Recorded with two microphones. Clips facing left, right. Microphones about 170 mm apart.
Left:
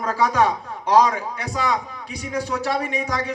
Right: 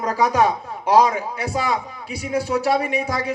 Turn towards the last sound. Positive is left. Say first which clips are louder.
# right 2 dB
turn(degrees=-10)  # may be behind; listen again after turning